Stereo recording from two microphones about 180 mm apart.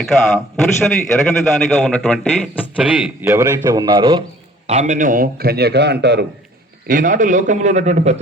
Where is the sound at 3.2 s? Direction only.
20° right (ahead or behind).